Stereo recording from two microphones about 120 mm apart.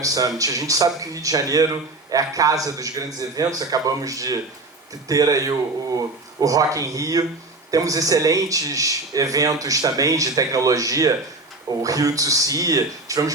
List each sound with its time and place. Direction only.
0.0 s speech: 30° right (ahead or behind)